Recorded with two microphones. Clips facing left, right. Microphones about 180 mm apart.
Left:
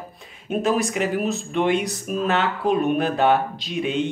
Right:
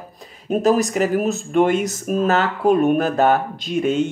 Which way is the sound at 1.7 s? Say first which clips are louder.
Right 3 dB; centre (ahead or behind).